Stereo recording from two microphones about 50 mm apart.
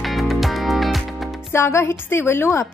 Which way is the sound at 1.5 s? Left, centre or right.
Left.